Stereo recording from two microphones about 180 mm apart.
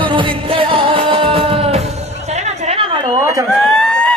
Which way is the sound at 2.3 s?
35° right (ahead or behind).